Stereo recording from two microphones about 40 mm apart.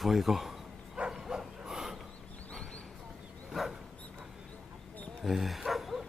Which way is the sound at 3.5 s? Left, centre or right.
Centre.